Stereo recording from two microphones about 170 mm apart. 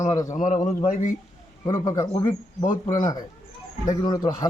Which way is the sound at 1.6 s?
20° left (ahead or behind).